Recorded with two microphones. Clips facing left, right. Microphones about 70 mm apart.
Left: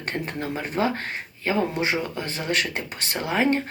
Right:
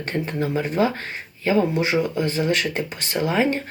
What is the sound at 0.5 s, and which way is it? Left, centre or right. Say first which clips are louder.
Speech: right 3 dB; left.